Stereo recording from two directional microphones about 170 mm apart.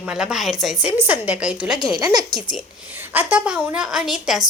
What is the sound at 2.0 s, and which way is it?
Speech, 25° right (ahead or behind).